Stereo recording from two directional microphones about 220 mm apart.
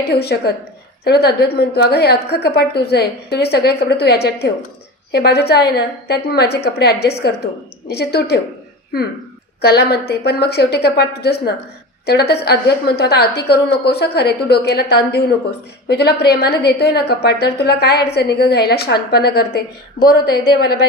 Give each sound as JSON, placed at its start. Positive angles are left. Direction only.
{"t": 0.1, "sound": "a woman's voice", "side_deg": 45}
{"t": 9.6, "sound": "a woman's voice", "side_deg": 45}